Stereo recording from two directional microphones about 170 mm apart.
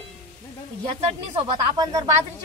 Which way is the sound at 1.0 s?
30° right (ahead or behind).